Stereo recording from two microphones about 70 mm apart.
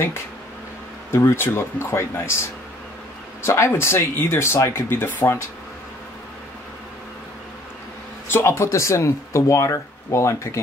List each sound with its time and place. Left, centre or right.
1.1 s speech: left
3.4 s speech: left
8.3 s speech: left